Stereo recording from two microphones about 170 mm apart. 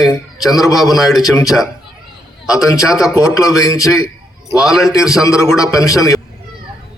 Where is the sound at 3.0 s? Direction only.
20° left (ahead or behind).